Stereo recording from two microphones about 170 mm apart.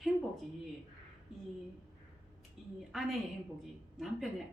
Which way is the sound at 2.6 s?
Centre (ahead or behind).